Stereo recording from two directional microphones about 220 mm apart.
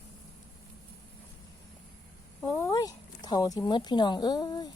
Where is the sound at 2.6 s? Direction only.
15° left (ahead or behind).